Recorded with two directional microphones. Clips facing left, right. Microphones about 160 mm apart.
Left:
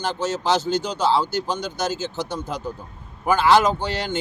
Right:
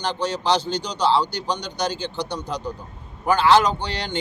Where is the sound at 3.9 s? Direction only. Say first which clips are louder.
Left 3 dB; 45° left (ahead or behind).